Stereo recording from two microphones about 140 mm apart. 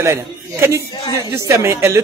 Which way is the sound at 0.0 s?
20° right (ahead or behind).